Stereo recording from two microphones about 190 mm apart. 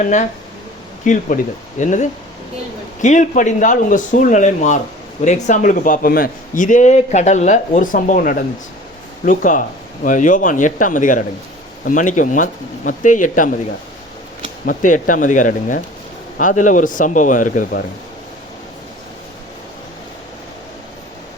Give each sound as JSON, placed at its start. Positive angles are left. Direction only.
{"t": 0.0, "sound": "a man's voice", "side_deg": 40}
{"t": 14.6, "sound": "speech", "side_deg": 45}